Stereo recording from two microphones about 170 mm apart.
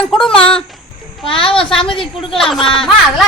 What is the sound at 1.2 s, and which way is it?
A child's voice, 30° left (ahead or behind).